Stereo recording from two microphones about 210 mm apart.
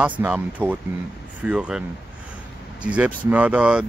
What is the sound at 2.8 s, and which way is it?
Speech, 5° right (ahead or behind).